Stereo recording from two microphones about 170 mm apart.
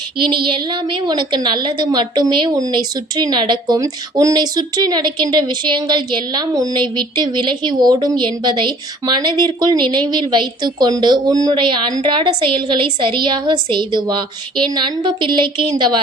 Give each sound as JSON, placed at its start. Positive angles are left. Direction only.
{"t": 0.4, "sound": "a woman's voice", "side_deg": -30}